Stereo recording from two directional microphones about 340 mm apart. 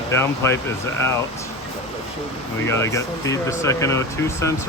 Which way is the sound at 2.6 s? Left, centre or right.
Centre.